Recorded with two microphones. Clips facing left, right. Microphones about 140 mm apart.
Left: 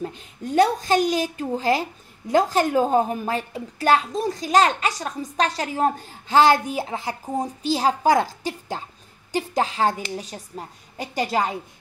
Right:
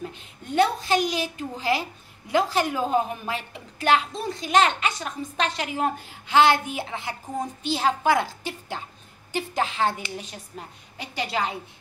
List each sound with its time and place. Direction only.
0.0 s a woman's voice: 40° left (ahead or behind)